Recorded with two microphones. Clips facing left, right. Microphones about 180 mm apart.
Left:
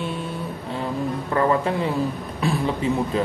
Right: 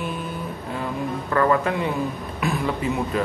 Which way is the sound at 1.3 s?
30° left (ahead or behind).